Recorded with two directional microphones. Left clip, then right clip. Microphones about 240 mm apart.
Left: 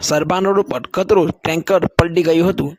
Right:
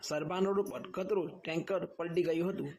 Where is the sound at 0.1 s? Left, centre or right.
Left.